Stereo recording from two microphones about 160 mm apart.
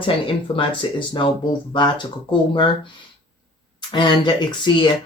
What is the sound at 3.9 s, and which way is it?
Speech, 30° left (ahead or behind).